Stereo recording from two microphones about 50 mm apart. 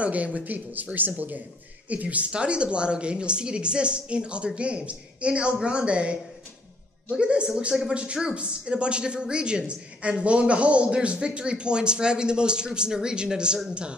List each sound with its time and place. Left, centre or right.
0.0 s speech: right